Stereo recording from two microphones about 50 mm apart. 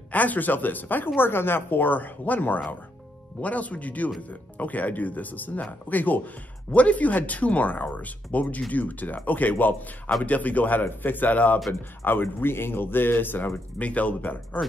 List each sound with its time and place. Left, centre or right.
0.1 s speech: left
12.0 s speech: left
13.7 s speech: left